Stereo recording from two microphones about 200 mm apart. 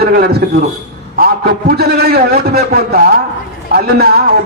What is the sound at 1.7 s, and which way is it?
A man's voice, 50° right (ahead or behind).